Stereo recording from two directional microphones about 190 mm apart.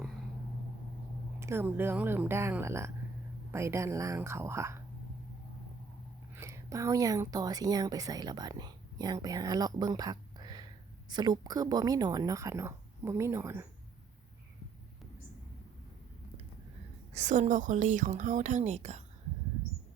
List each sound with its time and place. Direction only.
1.4 s speech: 15° right (ahead or behind)
6.3 s a woman's voice: 15° right (ahead or behind)
17.1 s a woman's voice: 40° right (ahead or behind)